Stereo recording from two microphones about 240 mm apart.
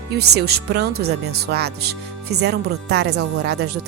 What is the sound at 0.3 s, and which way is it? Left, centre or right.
Speech, right.